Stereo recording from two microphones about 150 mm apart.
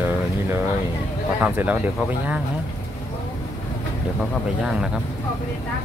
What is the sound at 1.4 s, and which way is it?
Speech, 10° right (ahead or behind).